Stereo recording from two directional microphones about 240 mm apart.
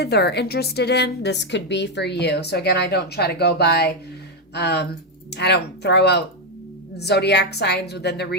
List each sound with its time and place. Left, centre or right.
0.0 s a woman's voice: left